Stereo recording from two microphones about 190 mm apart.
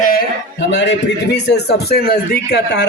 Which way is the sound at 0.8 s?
65° left (ahead or behind).